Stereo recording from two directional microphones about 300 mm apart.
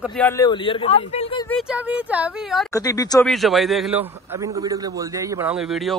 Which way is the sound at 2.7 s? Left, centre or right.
Centre.